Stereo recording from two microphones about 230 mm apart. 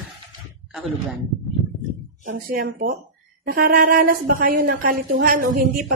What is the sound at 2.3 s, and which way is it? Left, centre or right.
A woman's voice, right.